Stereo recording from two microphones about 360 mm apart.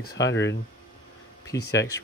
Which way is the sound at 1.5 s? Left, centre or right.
Left.